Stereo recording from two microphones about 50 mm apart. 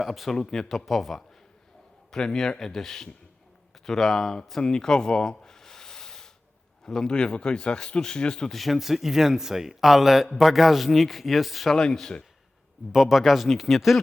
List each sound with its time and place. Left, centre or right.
0.0 s speech: centre
8.4 s speech: centre
11.7 s speech: centre
12.9 s speech: centre